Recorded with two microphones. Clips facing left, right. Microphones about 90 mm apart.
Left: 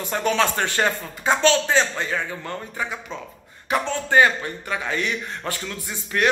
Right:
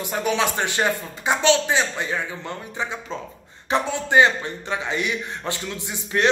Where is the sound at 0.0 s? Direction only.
10° right (ahead or behind).